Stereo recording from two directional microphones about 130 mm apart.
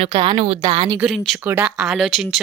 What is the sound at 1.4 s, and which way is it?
Speech, 10° right (ahead or behind).